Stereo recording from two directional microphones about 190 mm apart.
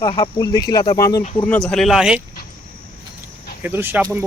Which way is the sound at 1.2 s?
30° left (ahead or behind).